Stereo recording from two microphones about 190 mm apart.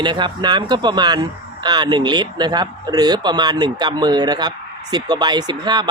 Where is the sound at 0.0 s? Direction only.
25° right (ahead or behind).